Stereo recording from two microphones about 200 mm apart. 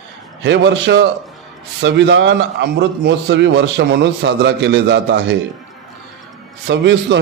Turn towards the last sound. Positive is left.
turn(degrees=-60)  # may be behind; listen again after turning